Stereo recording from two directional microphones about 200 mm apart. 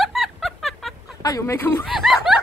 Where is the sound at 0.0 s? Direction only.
Centre (ahead or behind).